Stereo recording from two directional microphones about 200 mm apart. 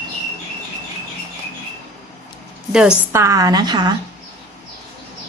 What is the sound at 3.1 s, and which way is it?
Speech, 15° right (ahead or behind).